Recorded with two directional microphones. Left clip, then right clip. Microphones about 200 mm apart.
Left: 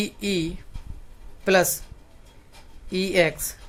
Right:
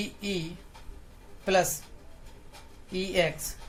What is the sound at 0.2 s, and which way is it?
Speech, 55° left (ahead or behind).